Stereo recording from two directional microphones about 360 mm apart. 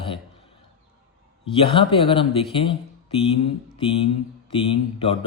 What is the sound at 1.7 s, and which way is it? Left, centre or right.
Speech, centre.